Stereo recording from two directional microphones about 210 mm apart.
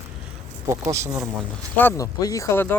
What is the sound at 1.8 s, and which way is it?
Speech, 15° left (ahead or behind).